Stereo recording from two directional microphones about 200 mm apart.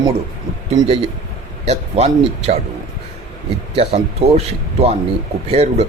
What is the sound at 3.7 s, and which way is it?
Speech, 30° right (ahead or behind).